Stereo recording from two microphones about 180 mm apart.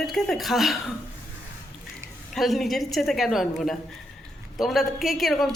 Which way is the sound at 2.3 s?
Centre (ahead or behind).